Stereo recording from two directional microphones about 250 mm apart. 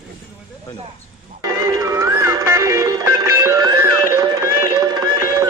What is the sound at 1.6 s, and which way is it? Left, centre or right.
Music, centre.